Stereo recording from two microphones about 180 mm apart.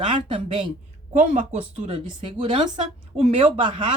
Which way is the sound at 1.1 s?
40° right (ahead or behind).